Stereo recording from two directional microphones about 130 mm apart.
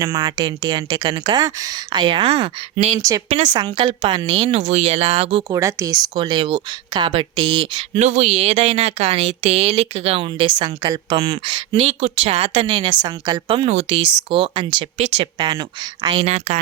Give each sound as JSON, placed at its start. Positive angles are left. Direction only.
{"t": 0.0, "sound": "speech", "side_deg": -30}
{"t": 2.7, "sound": "speech", "side_deg": -55}
{"t": 3.2, "sound": "speech", "side_deg": -40}
{"t": 3.8, "sound": "speech", "side_deg": -45}
{"t": 4.7, "sound": "speech", "side_deg": -55}
{"t": 5.5, "sound": "speech", "side_deg": -25}
{"t": 7.9, "sound": "speech", "side_deg": -60}
{"t": 12.6, "sound": "speech", "side_deg": -35}
{"t": 14.9, "sound": "speech", "side_deg": -60}
{"t": 15.2, "sound": "speech", "side_deg": -35}
{"t": 16.2, "sound": "speech", "side_deg": -60}